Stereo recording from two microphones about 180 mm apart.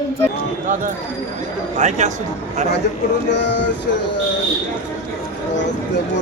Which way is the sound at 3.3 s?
75° left (ahead or behind).